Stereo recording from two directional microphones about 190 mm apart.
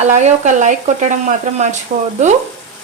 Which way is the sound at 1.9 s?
40° right (ahead or behind).